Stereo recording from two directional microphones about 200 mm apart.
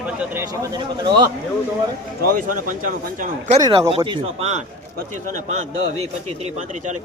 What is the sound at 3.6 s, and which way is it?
Speech, 20° right (ahead or behind).